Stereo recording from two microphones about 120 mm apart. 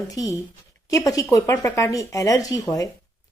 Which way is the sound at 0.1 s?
30° left (ahead or behind).